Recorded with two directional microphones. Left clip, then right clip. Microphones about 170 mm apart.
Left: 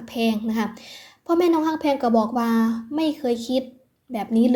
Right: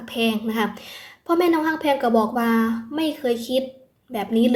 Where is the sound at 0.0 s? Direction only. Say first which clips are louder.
Right 1 dB; 35° left (ahead or behind).